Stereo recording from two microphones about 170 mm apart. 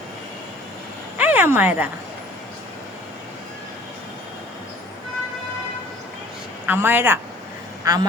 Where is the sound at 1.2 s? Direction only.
10° right (ahead or behind).